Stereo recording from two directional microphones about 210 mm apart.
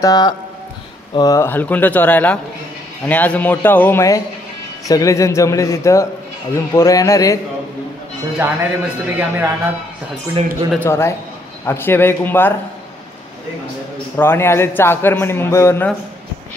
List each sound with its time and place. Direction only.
0.0 s a man's voice: 20° left (ahead or behind)
8.4 s a man's voice: 10° right (ahead or behind)
10.7 s a man's voice: 10° left (ahead or behind)
14.1 s a man's voice: 10° left (ahead or behind)